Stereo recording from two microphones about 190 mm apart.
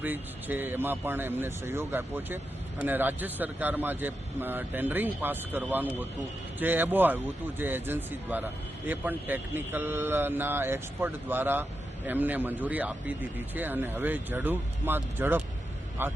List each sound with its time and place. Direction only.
0.0 s speech: 10° right (ahead or behind)